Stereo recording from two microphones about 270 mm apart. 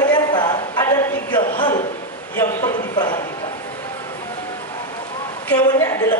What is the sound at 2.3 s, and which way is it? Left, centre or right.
Speech, centre.